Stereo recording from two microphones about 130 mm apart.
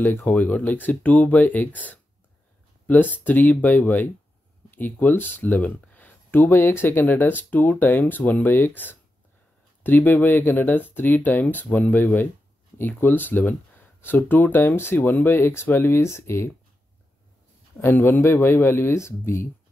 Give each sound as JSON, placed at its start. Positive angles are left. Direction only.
{"t": 0.0, "sound": "speech", "side_deg": 15}
{"t": 17.8, "sound": "a man's voice", "side_deg": 15}